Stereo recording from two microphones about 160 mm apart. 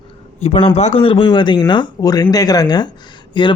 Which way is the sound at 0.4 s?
40° left (ahead or behind).